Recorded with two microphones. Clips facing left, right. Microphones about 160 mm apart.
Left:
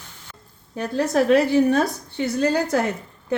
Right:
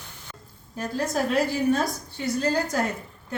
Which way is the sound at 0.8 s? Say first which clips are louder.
Left 6 dB; 65° left (ahead or behind).